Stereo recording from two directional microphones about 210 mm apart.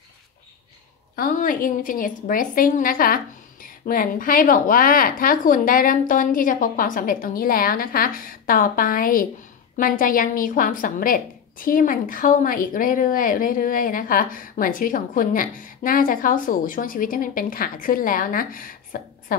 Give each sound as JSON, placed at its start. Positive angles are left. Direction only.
{"t": 1.1, "sound": "a woman's voice", "side_deg": 40}